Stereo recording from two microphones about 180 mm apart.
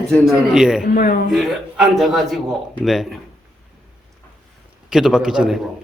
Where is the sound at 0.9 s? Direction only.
55° left (ahead or behind).